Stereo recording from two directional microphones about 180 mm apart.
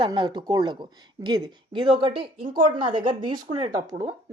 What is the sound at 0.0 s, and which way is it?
Speech, 25° right (ahead or behind).